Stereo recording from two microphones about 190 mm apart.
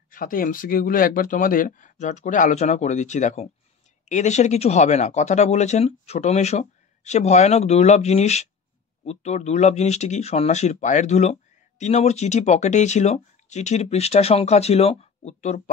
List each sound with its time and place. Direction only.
0.1 s speech: 45° left (ahead or behind)